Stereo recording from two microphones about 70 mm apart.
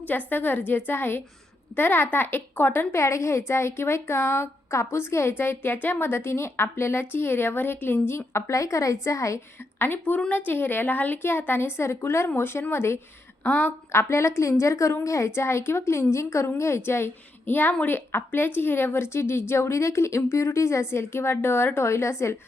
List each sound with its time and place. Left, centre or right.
0.3 s a woman's voice: left
9.7 s a woman's voice: left